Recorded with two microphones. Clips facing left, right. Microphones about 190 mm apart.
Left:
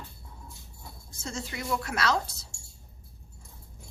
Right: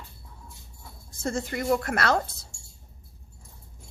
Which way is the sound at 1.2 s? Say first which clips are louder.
Right 7 dB; 55° right (ahead or behind).